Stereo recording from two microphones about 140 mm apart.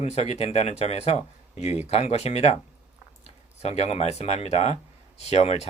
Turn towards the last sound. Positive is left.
turn(degrees=50)  # may be behind; listen again after turning